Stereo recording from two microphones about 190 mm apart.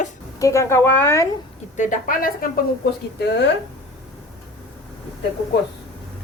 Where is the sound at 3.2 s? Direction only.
65° left (ahead or behind).